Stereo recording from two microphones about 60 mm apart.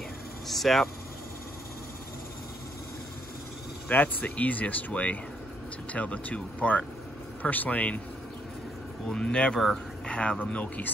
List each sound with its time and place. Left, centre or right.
0.5 s speech: centre
3.9 s speech: left
9.0 s speech: centre